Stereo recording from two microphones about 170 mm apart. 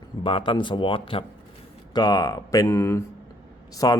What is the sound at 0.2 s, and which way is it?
Speech, 30° left (ahead or behind).